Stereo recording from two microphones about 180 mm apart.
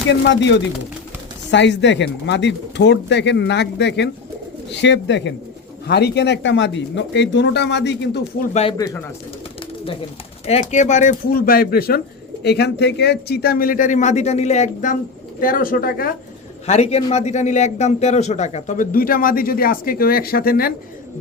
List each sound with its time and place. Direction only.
0.1 s speech: 90° left
5.9 s speech: 65° left (ahead or behind)
8.4 s speech: 35° left (ahead or behind)
8.8 s speech: 20° left (ahead or behind)
10.4 s speech: 40° left (ahead or behind); by 16.0 s 55° left (ahead or behind)
16.6 s speech: 35° left (ahead or behind); by 20.7 s 55° left (ahead or behind)